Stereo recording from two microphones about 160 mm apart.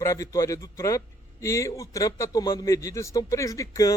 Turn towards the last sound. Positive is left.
turn(degrees=20)  # may be behind; listen again after turning